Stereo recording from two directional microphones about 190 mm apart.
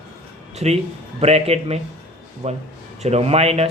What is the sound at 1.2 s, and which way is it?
Speech, 35° right (ahead or behind).